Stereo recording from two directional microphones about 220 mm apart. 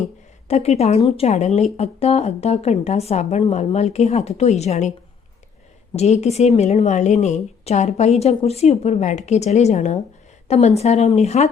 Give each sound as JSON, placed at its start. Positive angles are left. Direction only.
{"t": 0.4, "sound": "speech", "side_deg": 30}
{"t": 6.0, "sound": "a woman's voice", "side_deg": 30}